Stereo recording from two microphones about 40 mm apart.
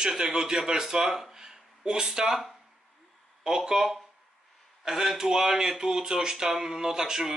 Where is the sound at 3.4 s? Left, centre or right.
Centre.